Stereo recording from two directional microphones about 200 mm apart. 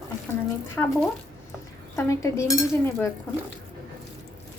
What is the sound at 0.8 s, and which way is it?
Speech, 5° left (ahead or behind).